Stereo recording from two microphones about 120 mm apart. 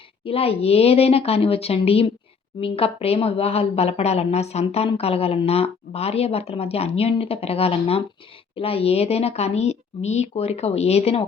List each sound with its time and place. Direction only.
0.3 s a woman's voice: 55° left (ahead or behind)